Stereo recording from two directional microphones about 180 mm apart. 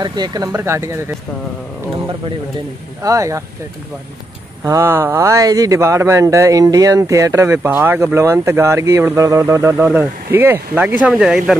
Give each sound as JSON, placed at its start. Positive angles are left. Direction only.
{"t": 0.0, "sound": "speech", "side_deg": -20}
{"t": 3.0, "sound": "speech", "side_deg": -15}
{"t": 4.6, "sound": "speech", "side_deg": -15}